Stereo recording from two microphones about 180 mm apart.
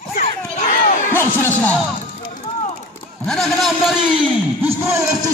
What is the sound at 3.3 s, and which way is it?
Speech, centre (ahead or behind).